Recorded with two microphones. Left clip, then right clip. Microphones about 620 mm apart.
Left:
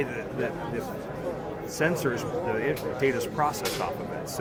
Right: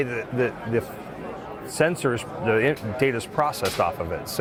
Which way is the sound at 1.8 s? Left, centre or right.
Right.